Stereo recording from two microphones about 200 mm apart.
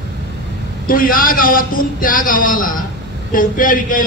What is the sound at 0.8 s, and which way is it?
A man's voice, 45° left (ahead or behind).